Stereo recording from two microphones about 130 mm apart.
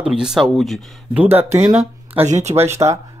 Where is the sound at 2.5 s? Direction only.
20° right (ahead or behind).